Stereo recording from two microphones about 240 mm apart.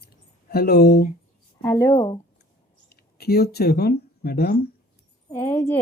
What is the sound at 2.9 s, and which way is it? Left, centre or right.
Speech, left.